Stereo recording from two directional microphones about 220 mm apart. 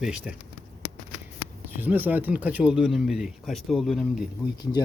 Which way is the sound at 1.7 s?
10° right (ahead or behind).